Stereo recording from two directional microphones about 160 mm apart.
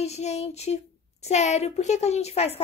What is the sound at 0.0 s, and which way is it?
A woman's voice, 45° left (ahead or behind).